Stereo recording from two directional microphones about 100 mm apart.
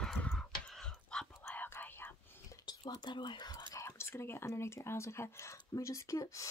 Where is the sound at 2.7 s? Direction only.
45° left (ahead or behind).